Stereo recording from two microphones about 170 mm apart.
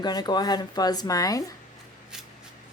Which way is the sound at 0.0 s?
25° left (ahead or behind).